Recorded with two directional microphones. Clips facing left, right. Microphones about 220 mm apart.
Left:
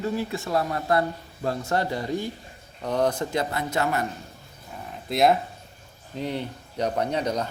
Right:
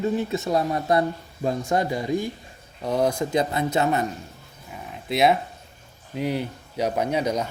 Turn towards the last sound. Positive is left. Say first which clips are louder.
# right 2 dB
turn(degrees=-10)  # may be behind; listen again after turning